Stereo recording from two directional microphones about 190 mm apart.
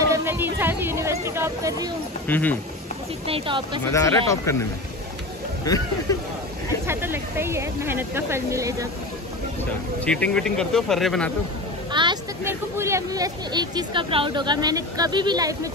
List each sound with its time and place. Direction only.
0.1 s a sound: 10° right (ahead or behind)
0.6 s speech: 10° right (ahead or behind)
2.2 s speech: 10° left (ahead or behind)
3.3 s speech: 30° right (ahead or behind)
3.9 s speech: 15° left (ahead or behind)
5.7 s speech: 20° left (ahead or behind)
6.9 s speech: 10° right (ahead or behind)
10.0 s speech: 5° left (ahead or behind)
11.9 s a sound: 25° right (ahead or behind)
12.4 s speech: 15° right (ahead or behind)